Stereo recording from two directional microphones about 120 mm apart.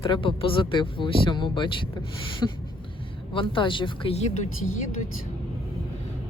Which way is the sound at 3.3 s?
45° left (ahead or behind).